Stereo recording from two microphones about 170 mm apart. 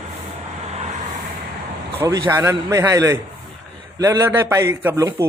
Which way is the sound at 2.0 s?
20° right (ahead or behind).